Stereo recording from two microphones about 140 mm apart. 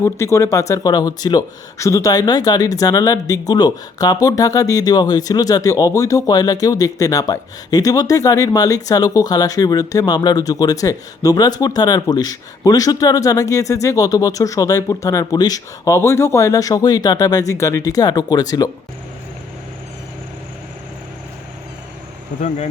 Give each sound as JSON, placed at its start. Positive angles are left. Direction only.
{"t": 0.0, "sound": "speech", "side_deg": 20}
{"t": 22.4, "sound": "speech", "side_deg": 55}